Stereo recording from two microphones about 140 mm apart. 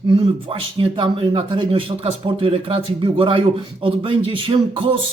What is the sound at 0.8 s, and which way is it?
Speech, 40° right (ahead or behind).